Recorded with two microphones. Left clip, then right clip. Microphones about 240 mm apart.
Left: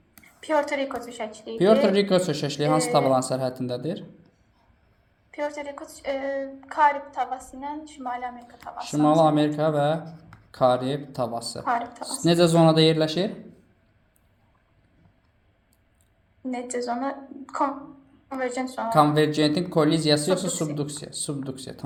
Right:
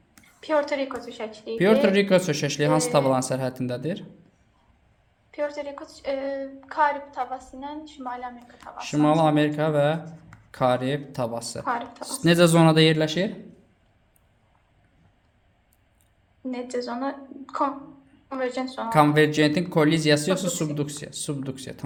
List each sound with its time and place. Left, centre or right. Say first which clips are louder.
0.3 s a woman's voice: even; left
1.5 s speech: even; right
5.3 s a woman's voice: right 1 dB; left
8.8 s speech: left 1 dB; right
16.4 s a woman's voice: even; left
18.9 s speech: right 1 dB; right